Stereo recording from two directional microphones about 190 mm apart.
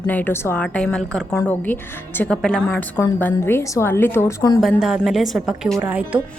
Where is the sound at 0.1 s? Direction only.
10° left (ahead or behind).